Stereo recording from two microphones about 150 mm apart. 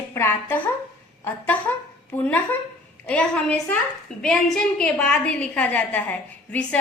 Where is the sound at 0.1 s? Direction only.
15° left (ahead or behind).